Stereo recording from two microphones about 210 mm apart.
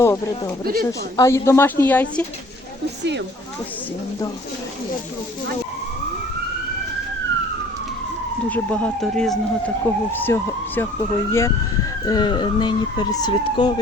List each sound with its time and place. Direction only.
0.0 s a sound: 15° left (ahead or behind)
0.6 s speech: 45° right (ahead or behind)
0.9 s speech: 15° left (ahead or behind)
3.0 s speech: 55° right (ahead or behind)
8.4 s speech: 5° left (ahead or behind)